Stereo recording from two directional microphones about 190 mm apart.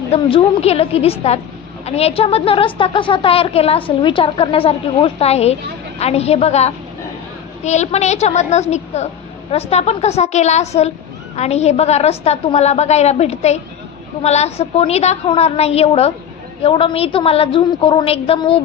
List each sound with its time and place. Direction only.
0.1 s a woman's voice: 30° left (ahead or behind)